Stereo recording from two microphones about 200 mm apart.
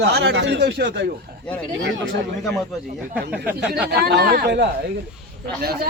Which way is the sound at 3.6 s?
55° right (ahead or behind).